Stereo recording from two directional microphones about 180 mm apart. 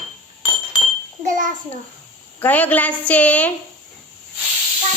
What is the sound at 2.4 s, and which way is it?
A woman's voice, 10° left (ahead or behind).